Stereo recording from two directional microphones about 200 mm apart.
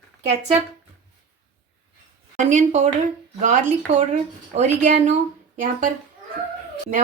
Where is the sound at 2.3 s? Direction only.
35° right (ahead or behind).